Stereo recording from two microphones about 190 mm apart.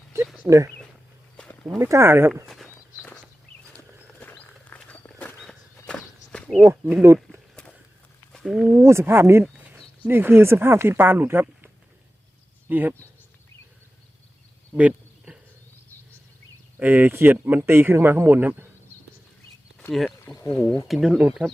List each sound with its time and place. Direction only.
0.4 s speech: 15° right (ahead or behind)
2.3 s speech: centre (ahead or behind)
2.6 s a sound: 10° left (ahead or behind)
5.7 s walk: 5° left (ahead or behind)
6.9 s speech: 15° right (ahead or behind)
8.3 s speech: centre (ahead or behind)
8.8 s speech: 15° right (ahead or behind)
14.7 s a sound: 5° right (ahead or behind)
16.8 s speech: 10° right (ahead or behind)
20.1 s speech: 10° left (ahead or behind)
20.8 s speech: centre (ahead or behind)